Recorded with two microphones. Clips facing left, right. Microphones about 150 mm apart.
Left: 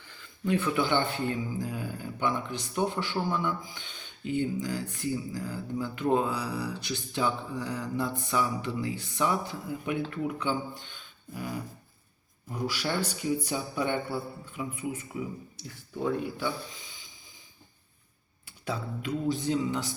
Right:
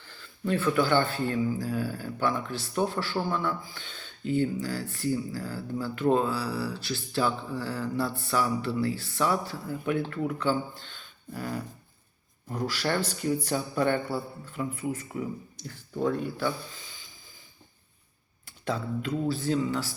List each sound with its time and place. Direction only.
0.0 s speech: 15° left (ahead or behind)
18.4 s speech: 10° left (ahead or behind)